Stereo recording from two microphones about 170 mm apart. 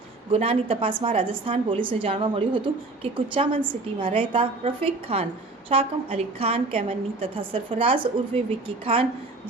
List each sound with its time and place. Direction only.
0.3 s a woman's voice: 35° right (ahead or behind)